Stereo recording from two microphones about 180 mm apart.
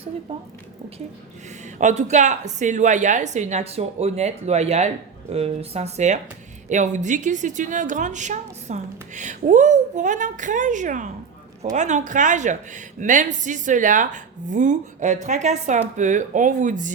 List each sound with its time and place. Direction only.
1.8 s a woman's voice: 40° right (ahead or behind)